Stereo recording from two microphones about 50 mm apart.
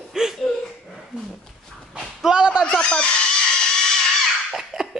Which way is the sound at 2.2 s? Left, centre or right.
Centre.